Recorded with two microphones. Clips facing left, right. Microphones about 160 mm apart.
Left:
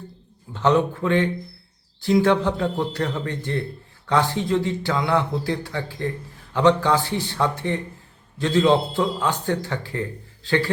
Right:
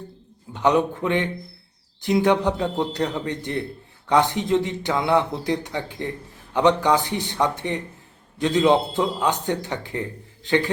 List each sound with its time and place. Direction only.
0.5 s a man's voice: 15° right (ahead or behind)